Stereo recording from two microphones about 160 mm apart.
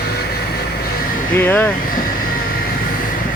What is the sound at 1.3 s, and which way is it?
Speech, 10° left (ahead or behind).